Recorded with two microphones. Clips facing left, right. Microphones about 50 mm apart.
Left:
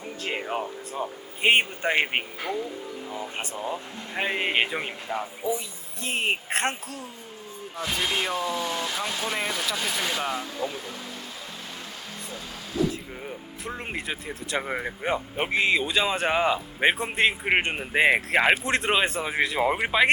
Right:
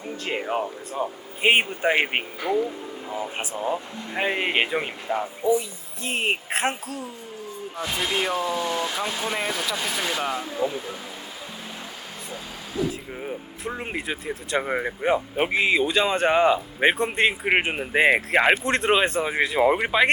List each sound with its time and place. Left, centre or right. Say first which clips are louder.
0.0 s speech: right 2 dB; centre
10.4 s speech: right 5 dB; centre
12.3 s vehicle: right 1 dB; centre
13.2 s speech: right 4 dB; centre